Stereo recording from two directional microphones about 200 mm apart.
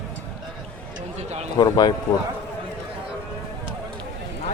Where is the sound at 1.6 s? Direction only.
20° left (ahead or behind).